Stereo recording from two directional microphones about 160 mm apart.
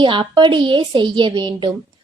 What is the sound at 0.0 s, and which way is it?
A woman's voice, 30° right (ahead or behind).